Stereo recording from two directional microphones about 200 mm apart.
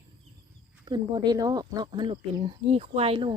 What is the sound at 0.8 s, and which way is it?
A woman's voice, 20° right (ahead or behind).